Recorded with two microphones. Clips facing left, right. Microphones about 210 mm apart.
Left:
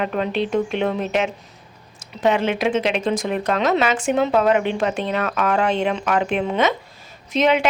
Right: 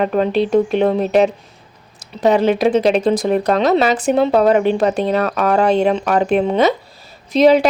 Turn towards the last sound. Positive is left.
turn(degrees=-35)  # may be behind; listen again after turning